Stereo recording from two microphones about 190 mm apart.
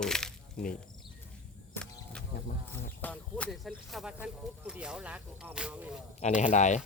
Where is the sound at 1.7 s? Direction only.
5° left (ahead or behind).